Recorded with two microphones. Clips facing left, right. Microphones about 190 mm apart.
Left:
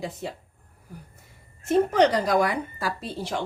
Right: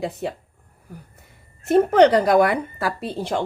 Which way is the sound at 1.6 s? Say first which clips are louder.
Right 5 dB; 60° right (ahead or behind).